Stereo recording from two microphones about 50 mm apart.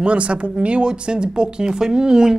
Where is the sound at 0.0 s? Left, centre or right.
Right.